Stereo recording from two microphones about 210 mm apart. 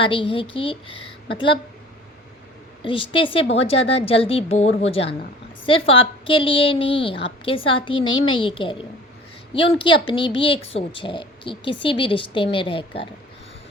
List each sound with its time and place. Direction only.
0.0 s a woman's voice: 25° left (ahead or behind)
2.8 s a woman's voice: 25° left (ahead or behind)